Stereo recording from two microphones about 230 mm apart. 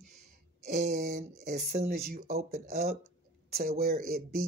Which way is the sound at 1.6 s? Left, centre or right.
Right.